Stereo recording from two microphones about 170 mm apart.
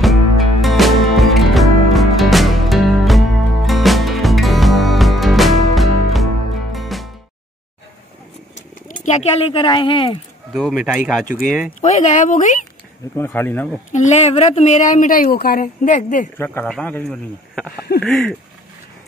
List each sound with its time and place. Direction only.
0.0 s music: centre (ahead or behind)
8.5 s speech: 50° left (ahead or behind); by 10.1 s 30° left (ahead or behind)
10.5 s speech: centre (ahead or behind)
11.8 s speech: 45° left (ahead or behind)
13.1 s speech: 15° left (ahead or behind)
13.9 s speech: 45° left (ahead or behind)
16.3 s speech: 10° left (ahead or behind)